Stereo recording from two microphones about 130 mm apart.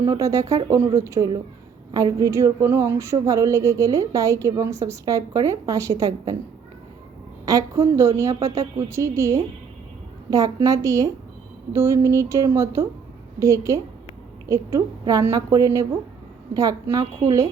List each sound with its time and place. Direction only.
0.0 s a woman's voice: 25° right (ahead or behind)
7.4 s a woman's voice: 25° right (ahead or behind)